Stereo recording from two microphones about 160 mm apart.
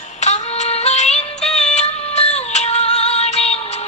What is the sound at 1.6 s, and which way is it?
Music, 45° left (ahead or behind).